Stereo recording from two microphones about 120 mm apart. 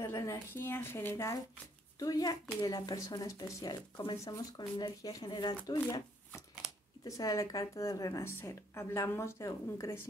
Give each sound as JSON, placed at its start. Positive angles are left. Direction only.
{"t": 0.0, "sound": "speech", "side_deg": 20}
{"t": 3.9, "sound": "speech", "side_deg": 40}
{"t": 4.2, "sound": "speech", "side_deg": 30}
{"t": 6.6, "sound": "a sound", "side_deg": -5}
{"t": 7.1, "sound": "speech", "side_deg": 25}